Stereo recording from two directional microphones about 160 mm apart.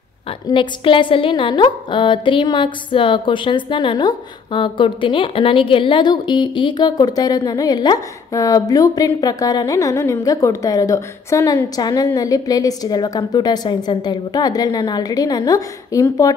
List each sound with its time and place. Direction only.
0.5 s a woman's voice: 30° left (ahead or behind)